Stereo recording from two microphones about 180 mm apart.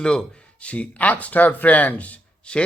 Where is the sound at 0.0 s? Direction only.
5° left (ahead or behind).